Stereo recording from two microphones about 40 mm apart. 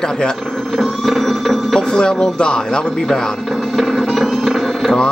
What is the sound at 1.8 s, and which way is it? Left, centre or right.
Speech, centre.